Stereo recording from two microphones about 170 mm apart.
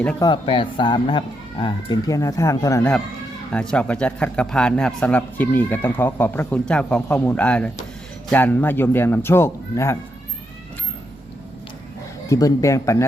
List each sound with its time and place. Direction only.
0.2 s speech: 30° left (ahead or behind)
3.5 s a man's voice: 5° left (ahead or behind)
12.3 s a man's voice: 20° left (ahead or behind)